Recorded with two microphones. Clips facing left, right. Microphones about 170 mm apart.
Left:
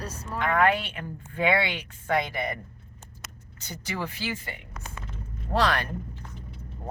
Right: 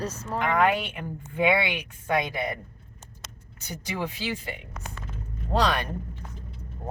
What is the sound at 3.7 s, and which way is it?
Speech, 15° right (ahead or behind).